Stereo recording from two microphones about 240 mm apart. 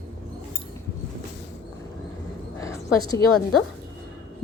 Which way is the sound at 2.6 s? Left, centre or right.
Centre.